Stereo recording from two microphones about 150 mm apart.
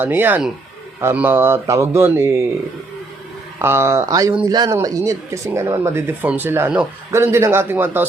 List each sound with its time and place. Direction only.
0.0 s speech: 15° right (ahead or behind)
3.6 s speech: 15° right (ahead or behind)